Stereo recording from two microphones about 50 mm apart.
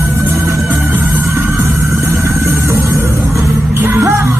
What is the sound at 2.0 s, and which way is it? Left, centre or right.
Music, right.